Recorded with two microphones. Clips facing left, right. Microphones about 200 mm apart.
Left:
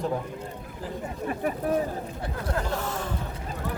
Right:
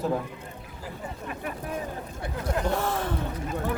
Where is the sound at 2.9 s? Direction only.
55° right (ahead or behind).